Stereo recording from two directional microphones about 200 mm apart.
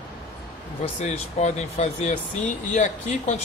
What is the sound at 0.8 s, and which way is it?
Speech, 35° left (ahead or behind).